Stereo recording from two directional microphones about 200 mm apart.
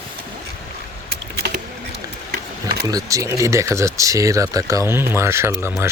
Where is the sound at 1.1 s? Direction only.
55° right (ahead or behind).